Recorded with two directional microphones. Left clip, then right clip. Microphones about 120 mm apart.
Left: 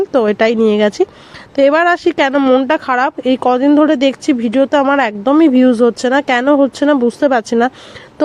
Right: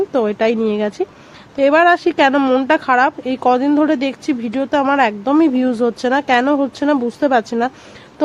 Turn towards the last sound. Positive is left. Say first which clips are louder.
# left 3 dB
turn(degrees=35)  # may be behind; listen again after turning